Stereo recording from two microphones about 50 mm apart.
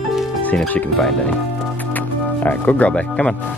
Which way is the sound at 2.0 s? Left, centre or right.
Left.